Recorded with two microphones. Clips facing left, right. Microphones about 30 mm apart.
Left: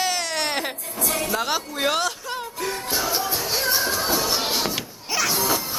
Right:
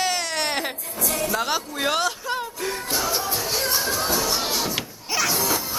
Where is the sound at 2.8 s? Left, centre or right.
Centre.